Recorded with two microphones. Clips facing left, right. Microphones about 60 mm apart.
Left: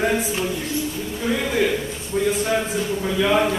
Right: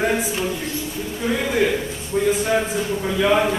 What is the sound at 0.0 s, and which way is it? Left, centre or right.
A man's voice, centre.